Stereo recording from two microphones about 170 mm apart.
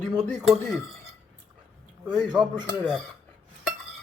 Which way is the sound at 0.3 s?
Centre (ahead or behind).